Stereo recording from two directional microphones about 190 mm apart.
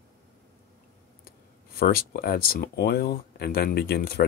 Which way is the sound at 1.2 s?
50° left (ahead or behind).